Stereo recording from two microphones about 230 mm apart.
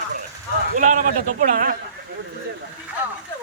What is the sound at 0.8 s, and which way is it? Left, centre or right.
Speech, right.